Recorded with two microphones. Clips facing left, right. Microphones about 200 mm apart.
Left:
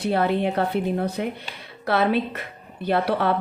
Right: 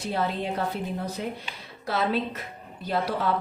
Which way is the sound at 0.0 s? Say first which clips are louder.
Left 7 dB; 65° left (ahead or behind).